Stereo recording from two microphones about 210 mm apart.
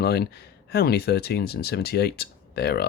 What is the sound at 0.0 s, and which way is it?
Speech, 50° left (ahead or behind).